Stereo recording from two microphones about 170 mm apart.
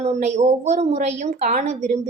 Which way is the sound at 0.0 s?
40° right (ahead or behind).